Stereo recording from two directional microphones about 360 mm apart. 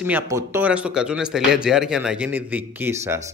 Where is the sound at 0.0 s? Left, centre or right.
Centre.